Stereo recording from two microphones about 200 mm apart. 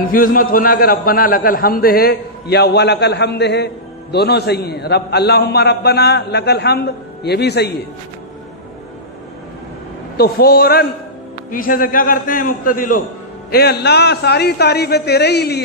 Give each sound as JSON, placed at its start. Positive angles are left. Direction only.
{"t": 0.1, "sound": "a man's voice", "side_deg": 45}
{"t": 10.1, "sound": "a man's voice", "side_deg": 50}